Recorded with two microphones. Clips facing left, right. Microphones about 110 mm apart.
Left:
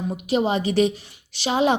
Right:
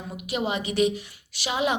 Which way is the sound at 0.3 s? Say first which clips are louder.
Left 6 dB; 30° left (ahead or behind).